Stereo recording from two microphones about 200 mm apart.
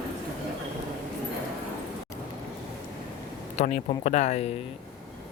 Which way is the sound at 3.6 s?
35° left (ahead or behind).